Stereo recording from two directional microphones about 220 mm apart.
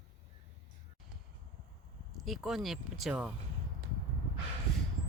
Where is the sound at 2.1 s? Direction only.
Centre (ahead or behind).